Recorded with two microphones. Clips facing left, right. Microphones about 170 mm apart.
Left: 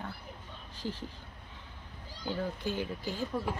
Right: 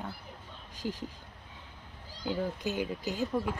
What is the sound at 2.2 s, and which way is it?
Speech, 10° right (ahead or behind).